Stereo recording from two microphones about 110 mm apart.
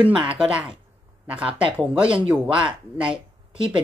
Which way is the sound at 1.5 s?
50° right (ahead or behind).